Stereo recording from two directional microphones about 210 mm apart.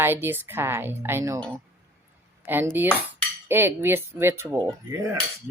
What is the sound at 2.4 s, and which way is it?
Speech, 10° right (ahead or behind).